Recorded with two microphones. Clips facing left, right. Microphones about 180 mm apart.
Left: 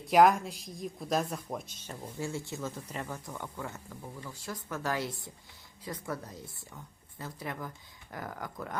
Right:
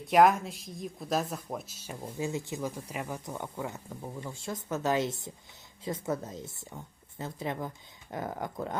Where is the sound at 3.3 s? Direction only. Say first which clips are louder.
Right 3 dB; 20° right (ahead or behind).